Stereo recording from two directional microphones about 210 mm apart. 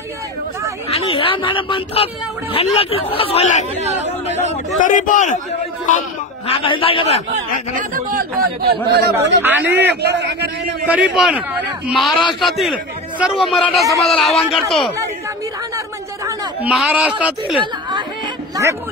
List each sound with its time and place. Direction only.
0.8 s a sound: 25° left (ahead or behind)
2.5 s speech: 25° left (ahead or behind)
4.8 s a man's voice: 40° left (ahead or behind)
6.4 s speech: 25° left (ahead or behind)
7.7 s speech: 40° right (ahead or behind)
9.4 s speech: 10° right (ahead or behind)
9.8 s a man's voice: 55° right (ahead or behind)
11.1 s a man's voice: centre (ahead or behind)
16.3 s a sound: 5° right (ahead or behind)
17.6 s speech: 25° right (ahead or behind)